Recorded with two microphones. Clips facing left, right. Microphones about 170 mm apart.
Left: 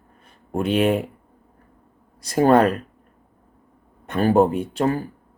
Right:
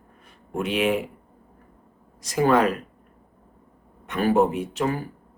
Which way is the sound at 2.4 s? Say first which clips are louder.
Left 4 dB; 40° left (ahead or behind).